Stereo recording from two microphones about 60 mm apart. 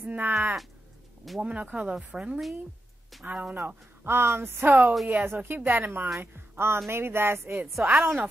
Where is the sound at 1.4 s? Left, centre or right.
Right.